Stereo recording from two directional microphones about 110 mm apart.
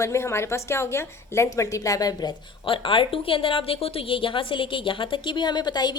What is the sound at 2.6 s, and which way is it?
A woman's voice, 50° left (ahead or behind).